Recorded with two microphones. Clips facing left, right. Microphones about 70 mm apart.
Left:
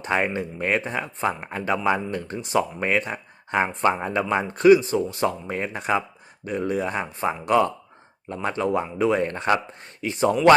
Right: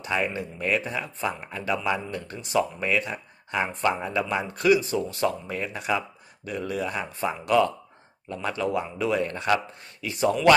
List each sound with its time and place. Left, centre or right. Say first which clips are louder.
0.0 s speech: left 3 dB; left